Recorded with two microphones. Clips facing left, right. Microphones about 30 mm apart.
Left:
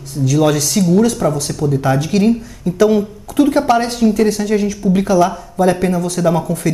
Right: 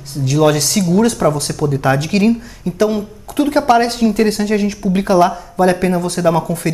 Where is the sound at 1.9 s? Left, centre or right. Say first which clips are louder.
Even; right.